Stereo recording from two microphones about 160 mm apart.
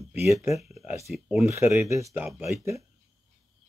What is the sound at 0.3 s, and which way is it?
Speech, 15° right (ahead or behind).